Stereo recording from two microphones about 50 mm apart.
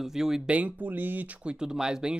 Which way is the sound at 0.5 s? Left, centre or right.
Right.